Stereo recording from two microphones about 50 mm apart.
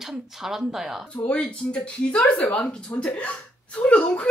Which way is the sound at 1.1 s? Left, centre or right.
Left.